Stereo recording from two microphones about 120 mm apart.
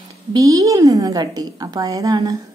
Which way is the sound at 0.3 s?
30° right (ahead or behind).